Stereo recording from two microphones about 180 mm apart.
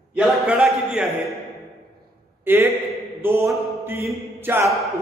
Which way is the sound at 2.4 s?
10° right (ahead or behind).